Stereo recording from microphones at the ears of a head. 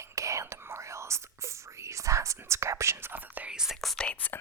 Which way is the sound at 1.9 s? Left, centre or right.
Right.